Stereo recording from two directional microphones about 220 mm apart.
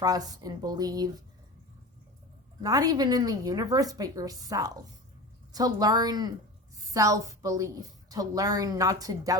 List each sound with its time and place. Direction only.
0.0 s a woman's voice: 15° right (ahead or behind)
2.6 s a woman's voice: 15° right (ahead or behind)